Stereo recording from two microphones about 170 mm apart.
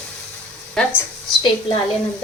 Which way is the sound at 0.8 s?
5° left (ahead or behind).